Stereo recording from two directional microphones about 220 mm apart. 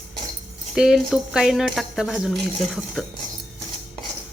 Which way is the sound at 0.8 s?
Centre (ahead or behind).